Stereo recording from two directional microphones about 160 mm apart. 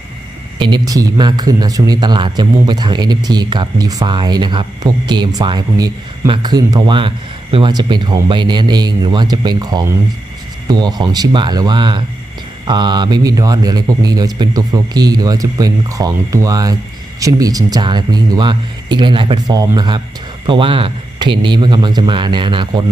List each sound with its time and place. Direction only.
0.6 s a man's voice: 25° right (ahead or behind)